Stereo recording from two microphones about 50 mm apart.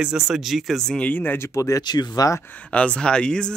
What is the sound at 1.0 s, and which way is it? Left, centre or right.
Speech, left.